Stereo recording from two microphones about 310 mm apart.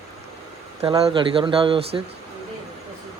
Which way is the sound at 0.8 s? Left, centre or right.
Centre.